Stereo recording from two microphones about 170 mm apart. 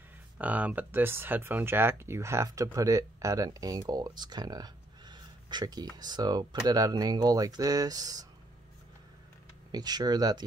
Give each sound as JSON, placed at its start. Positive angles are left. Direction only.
{"t": 0.4, "sound": "speech", "side_deg": -10}
{"t": 9.7, "sound": "speech", "side_deg": -25}